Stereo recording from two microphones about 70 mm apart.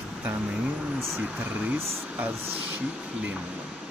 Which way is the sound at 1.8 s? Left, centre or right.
Centre.